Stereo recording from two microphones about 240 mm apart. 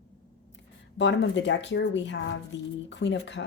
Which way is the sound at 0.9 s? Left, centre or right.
Left.